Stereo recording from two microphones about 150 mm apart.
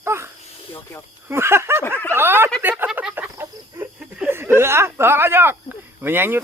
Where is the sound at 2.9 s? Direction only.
10° right (ahead or behind).